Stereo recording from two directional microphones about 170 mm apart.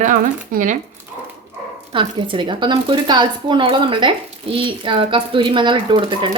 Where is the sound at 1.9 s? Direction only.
30° right (ahead or behind).